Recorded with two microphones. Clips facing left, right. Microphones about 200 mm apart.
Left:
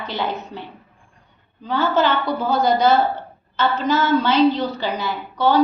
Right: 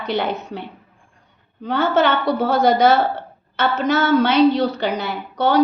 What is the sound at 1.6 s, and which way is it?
A woman's voice, 70° right (ahead or behind).